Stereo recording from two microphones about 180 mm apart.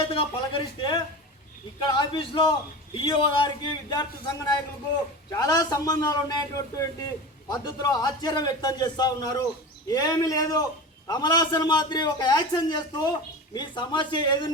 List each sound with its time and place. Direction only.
0.0 s a man's voice: 30° left (ahead or behind)